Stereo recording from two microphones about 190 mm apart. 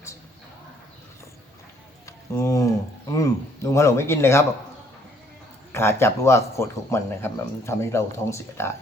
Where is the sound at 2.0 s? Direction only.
15° left (ahead or behind).